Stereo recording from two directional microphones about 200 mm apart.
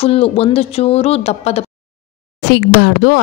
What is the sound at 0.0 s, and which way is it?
Speech, 30° left (ahead or behind).